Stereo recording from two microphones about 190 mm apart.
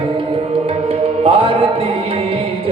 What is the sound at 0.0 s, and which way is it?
Music, 25° right (ahead or behind).